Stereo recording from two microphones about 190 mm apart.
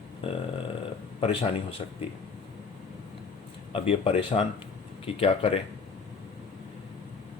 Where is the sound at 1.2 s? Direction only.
30° left (ahead or behind).